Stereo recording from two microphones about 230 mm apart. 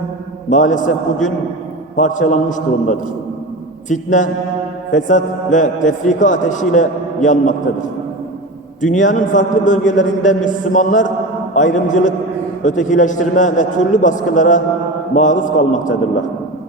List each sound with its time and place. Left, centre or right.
0.5 s a man's voice: left
3.8 s a man's voice: left